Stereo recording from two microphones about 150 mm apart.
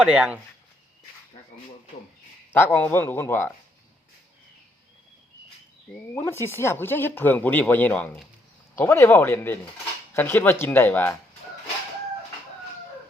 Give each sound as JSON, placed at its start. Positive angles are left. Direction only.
{"t": 0.0, "sound": "speech", "side_deg": -5}
{"t": 2.5, "sound": "speech", "side_deg": 15}
{"t": 6.3, "sound": "speech", "side_deg": 15}